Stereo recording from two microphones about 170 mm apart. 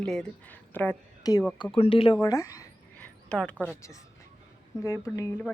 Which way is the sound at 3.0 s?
5° left (ahead or behind).